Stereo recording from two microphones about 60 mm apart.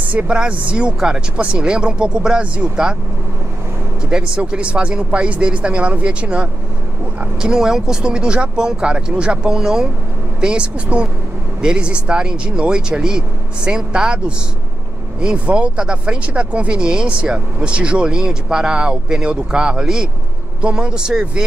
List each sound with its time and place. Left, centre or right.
0.1 s speech: centre
4.1 s speech: centre